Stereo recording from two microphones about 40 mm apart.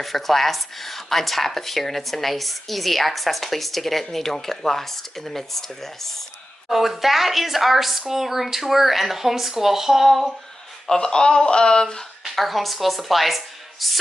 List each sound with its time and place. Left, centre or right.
0.0 s speech: centre
6.7 s speech: centre
10.9 s speech: centre
12.4 s a woman's voice: centre